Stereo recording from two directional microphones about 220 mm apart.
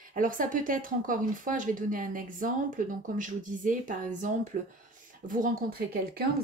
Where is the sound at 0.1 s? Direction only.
35° right (ahead or behind).